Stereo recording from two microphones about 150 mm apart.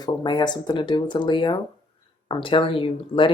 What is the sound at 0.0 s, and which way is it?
Speech, 30° left (ahead or behind).